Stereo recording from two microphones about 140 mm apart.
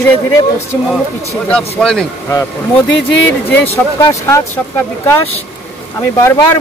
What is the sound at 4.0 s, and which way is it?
Speech, 20° left (ahead or behind).